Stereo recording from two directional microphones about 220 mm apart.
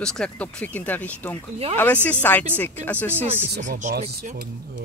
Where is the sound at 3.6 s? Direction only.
40° right (ahead or behind).